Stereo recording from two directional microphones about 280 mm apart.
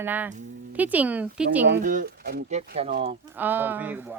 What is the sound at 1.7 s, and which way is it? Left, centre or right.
Speech, right.